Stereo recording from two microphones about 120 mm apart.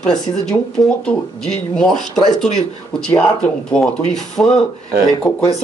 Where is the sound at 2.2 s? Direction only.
75° left (ahead or behind).